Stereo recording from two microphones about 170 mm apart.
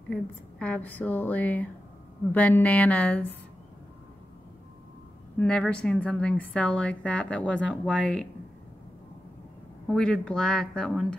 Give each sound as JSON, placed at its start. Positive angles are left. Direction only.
{"t": 0.1, "sound": "a woman's voice", "side_deg": 5}
{"t": 5.4, "sound": "a woman's voice", "side_deg": 5}
{"t": 9.8, "sound": "speech", "side_deg": 5}